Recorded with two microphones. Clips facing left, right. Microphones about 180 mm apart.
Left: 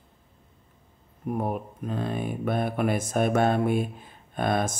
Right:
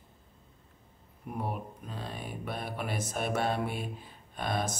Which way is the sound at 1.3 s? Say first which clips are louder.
Left 8 dB; 45° left (ahead or behind).